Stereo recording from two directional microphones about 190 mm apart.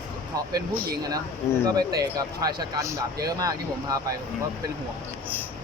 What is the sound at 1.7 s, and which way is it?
Speech, 20° right (ahead or behind).